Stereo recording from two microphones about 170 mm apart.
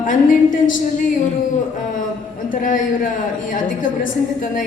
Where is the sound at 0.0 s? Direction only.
50° left (ahead or behind).